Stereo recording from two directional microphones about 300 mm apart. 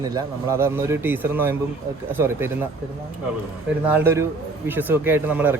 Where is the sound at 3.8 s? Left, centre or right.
Centre.